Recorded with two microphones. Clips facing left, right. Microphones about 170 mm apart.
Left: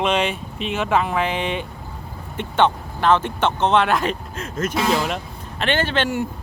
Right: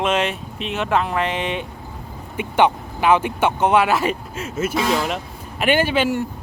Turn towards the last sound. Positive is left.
turn(degrees=-10)  # may be behind; listen again after turning